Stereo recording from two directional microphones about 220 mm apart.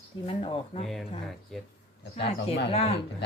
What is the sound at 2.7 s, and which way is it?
Speech, 25° left (ahead or behind).